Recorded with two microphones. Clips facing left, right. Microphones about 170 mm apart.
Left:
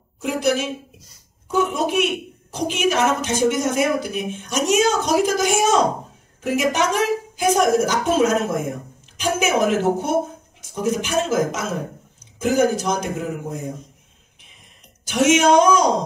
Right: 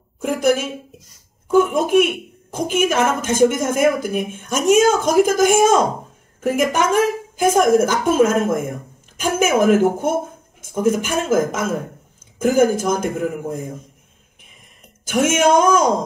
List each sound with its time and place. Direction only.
0.2 s a sound: 50° right (ahead or behind)
1.5 s speech: 50° right (ahead or behind)
15.0 s speech: 50° right (ahead or behind)